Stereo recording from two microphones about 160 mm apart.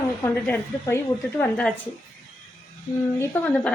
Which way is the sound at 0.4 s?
15° left (ahead or behind).